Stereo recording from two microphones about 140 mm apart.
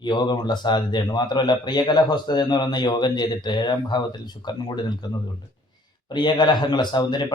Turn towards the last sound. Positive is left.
turn(degrees=30)  # may be behind; listen again after turning